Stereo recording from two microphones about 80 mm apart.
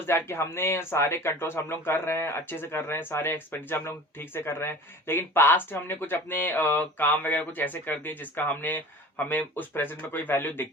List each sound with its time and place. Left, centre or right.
0.0 s speech: left